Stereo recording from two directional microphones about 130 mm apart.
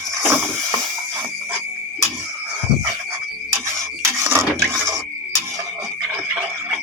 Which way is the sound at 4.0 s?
20° right (ahead or behind).